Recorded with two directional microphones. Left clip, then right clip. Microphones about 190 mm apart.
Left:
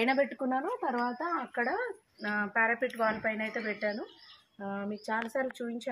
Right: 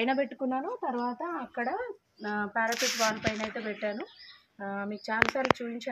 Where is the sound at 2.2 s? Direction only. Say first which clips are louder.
Left 1 dB; 25° left (ahead or behind).